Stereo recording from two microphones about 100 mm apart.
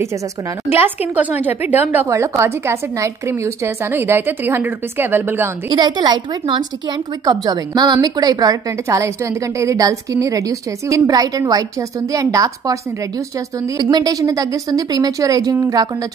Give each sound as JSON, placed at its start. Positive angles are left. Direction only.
{"t": 0.7, "sound": "a woman's voice", "side_deg": -20}
{"t": 2.0, "sound": "a woman's voice", "side_deg": -30}
{"t": 5.7, "sound": "a woman's voice", "side_deg": -45}
{"t": 7.2, "sound": "speech", "side_deg": -40}
{"t": 8.8, "sound": "speech", "side_deg": -30}
{"t": 13.7, "sound": "speech", "side_deg": -45}